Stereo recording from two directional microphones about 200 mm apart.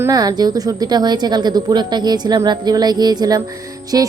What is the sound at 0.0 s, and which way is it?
Speech, 20° right (ahead or behind).